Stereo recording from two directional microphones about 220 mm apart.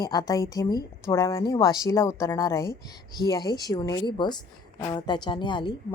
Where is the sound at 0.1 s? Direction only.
15° left (ahead or behind).